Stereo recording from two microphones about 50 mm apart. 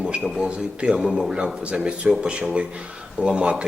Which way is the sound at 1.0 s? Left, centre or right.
Centre.